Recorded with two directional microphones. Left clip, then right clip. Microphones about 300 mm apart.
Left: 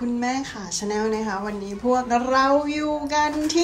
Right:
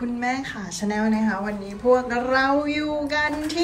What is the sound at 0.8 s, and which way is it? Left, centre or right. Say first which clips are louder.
Speech: even; centre.